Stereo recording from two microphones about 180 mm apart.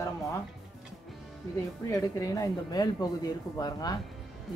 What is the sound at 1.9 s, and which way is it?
Speech, 20° left (ahead or behind).